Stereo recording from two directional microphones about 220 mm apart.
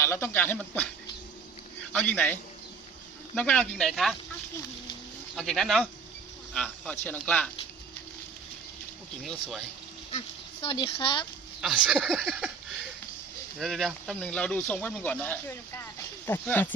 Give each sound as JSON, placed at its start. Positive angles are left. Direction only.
{"t": 0.0, "sound": "speech", "side_deg": 10}
{"t": 1.9, "sound": "a man's voice", "side_deg": 10}
{"t": 5.4, "sound": "a man's voice", "side_deg": 0}
{"t": 9.2, "sound": "a man's voice", "side_deg": 0}
{"t": 10.1, "sound": "speech", "side_deg": 25}
{"t": 11.6, "sound": "a man's voice", "side_deg": -5}
{"t": 13.6, "sound": "speech", "side_deg": 0}